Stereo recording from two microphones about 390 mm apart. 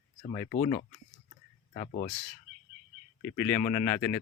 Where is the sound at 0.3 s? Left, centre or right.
Centre.